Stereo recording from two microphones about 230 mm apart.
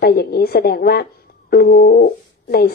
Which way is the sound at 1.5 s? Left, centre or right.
Left.